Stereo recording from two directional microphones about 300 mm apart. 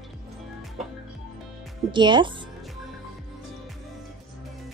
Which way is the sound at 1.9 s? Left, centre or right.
Centre.